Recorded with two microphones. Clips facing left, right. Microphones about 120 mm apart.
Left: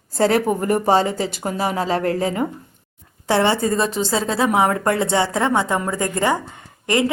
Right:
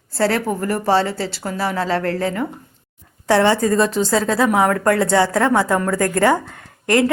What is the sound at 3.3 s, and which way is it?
A woman's voice, 30° left (ahead or behind).